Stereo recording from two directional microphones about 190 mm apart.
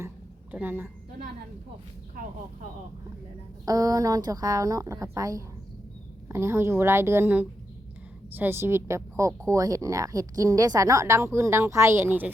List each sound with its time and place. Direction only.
0.5 s a woman's voice: 10° right (ahead or behind)
3.7 s a woman's voice: 20° right (ahead or behind)